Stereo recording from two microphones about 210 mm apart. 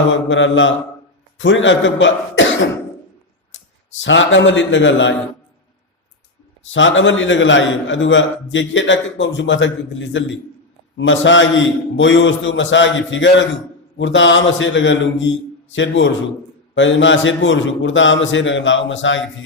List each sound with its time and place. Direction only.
0.1 s a man's voice: 60° left (ahead or behind)
3.5 s a man's voice: 60° left (ahead or behind)
6.7 s a man's voice: 65° left (ahead or behind)